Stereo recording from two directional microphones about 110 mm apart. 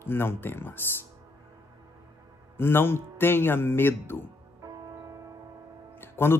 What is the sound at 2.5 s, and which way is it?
Speech, 20° left (ahead or behind).